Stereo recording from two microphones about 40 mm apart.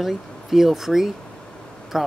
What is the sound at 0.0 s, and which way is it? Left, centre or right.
Speech, centre.